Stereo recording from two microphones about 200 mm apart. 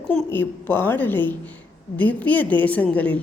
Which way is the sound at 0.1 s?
10° left (ahead or behind).